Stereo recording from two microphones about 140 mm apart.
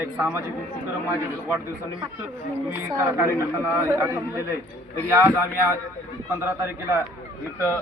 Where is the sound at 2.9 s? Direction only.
20° right (ahead or behind).